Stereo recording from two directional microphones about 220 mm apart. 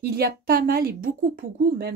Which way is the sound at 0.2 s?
45° right (ahead or behind).